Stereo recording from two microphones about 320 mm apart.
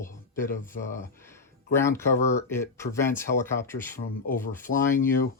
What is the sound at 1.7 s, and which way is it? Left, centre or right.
Speech, centre.